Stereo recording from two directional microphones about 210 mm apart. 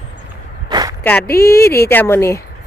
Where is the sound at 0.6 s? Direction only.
20° right (ahead or behind).